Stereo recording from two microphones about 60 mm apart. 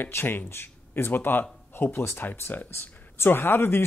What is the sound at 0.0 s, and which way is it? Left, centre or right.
Speech, left.